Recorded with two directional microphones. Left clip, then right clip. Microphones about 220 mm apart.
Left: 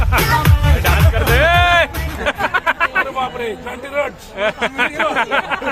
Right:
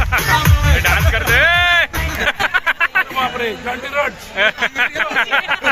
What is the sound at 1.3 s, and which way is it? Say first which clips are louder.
Music: even; centre (ahead or behind).